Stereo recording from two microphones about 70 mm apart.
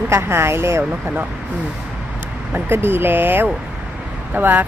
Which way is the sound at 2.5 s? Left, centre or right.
Right.